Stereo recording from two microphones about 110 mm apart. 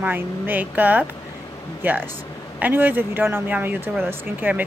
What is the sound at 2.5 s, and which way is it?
A woman's voice, 15° right (ahead or behind).